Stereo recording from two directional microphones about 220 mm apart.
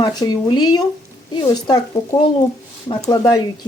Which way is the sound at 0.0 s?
20° left (ahead or behind).